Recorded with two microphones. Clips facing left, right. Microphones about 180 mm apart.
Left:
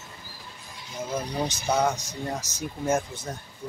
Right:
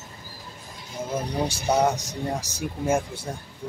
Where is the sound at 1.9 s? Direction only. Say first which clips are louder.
Right 3 dB; 35° right (ahead or behind).